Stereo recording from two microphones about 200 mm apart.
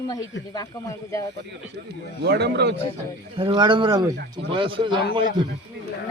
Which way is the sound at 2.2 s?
55° right (ahead or behind).